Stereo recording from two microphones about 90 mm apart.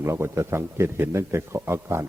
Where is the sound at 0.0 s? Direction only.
30° right (ahead or behind).